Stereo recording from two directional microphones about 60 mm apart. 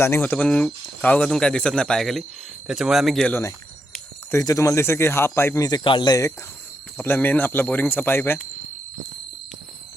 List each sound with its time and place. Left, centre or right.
0.0 s speech: left
0.3 s speech: centre
1.0 s speech: left
1.3 s speech: centre
2.6 s speech: centre
4.4 s speech: left
5.5 s speech: left
6.9 s speech: left